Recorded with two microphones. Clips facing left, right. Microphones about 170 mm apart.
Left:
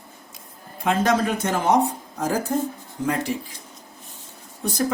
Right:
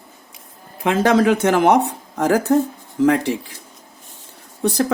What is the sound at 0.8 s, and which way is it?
Speech, 80° right.